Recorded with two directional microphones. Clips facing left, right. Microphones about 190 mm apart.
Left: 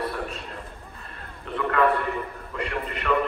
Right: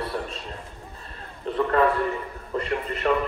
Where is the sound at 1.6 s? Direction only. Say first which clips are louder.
Right 1 dB; 35° right (ahead or behind).